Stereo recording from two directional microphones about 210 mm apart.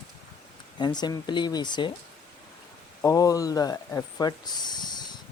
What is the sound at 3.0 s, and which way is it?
Speech, 15° left (ahead or behind).